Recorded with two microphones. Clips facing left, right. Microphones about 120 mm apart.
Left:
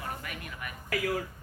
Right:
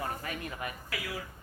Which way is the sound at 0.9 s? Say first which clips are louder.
Left 8 dB; 50° left (ahead or behind).